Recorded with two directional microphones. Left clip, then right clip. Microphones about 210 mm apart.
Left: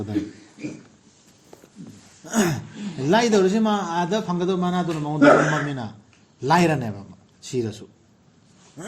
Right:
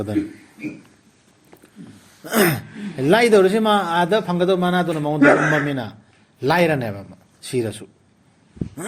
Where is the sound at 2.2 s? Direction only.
40° right (ahead or behind).